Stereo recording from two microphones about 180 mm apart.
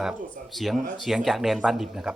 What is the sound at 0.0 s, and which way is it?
Speech, centre (ahead or behind).